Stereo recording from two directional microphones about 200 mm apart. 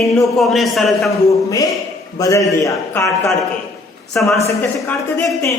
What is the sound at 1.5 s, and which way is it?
A man's voice, 15° left (ahead or behind).